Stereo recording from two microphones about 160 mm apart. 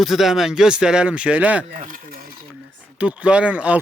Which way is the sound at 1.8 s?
60° right (ahead or behind).